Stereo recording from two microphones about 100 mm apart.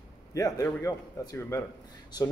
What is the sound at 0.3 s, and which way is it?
A man's voice, 35° left (ahead or behind).